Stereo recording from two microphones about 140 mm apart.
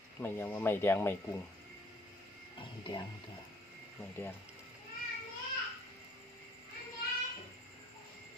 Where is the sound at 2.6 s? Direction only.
35° left (ahead or behind).